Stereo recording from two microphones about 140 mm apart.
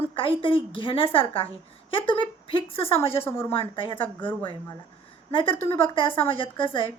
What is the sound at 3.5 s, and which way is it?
Speech, 35° left (ahead or behind).